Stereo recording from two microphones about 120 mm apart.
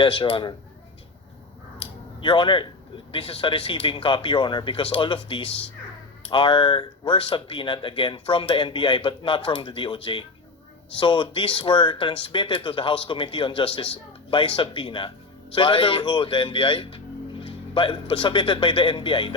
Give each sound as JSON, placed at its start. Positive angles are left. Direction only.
{"t": 0.0, "sound": "speech", "side_deg": 45}
{"t": 1.8, "sound": "a sound", "side_deg": 45}
{"t": 3.1, "sound": "a man's voice", "side_deg": 45}